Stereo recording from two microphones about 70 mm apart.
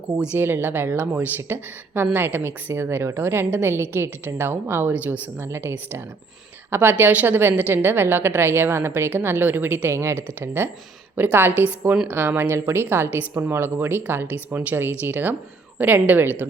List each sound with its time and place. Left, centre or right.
0.3 s speech: right
5.4 s a woman's voice: right